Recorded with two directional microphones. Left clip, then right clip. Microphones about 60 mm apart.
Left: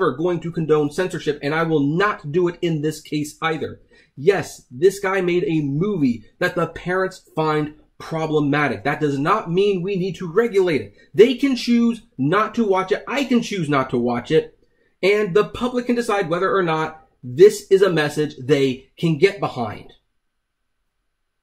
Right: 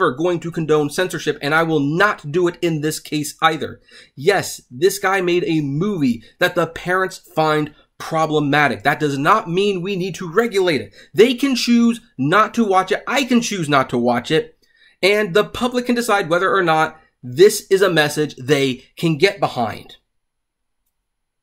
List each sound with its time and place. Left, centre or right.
0.0 s speech: right